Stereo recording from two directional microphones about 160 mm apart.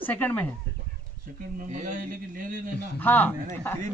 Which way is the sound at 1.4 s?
50° right (ahead or behind).